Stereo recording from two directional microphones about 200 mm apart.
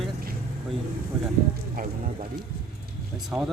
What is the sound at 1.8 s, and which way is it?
Speech, 45° right (ahead or behind).